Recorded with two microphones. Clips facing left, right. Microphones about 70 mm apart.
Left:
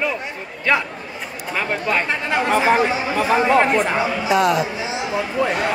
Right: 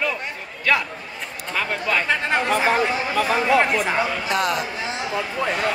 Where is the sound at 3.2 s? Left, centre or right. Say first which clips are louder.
Left 3 dB; left.